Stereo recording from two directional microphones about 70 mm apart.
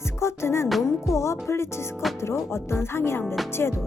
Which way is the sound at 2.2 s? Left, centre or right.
Left.